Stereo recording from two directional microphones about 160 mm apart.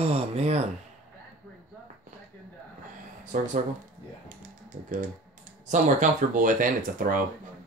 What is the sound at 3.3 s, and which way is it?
Speech, 55° right (ahead or behind).